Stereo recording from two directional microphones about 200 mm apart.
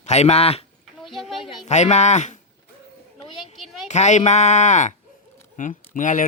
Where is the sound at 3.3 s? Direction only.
Centre (ahead or behind).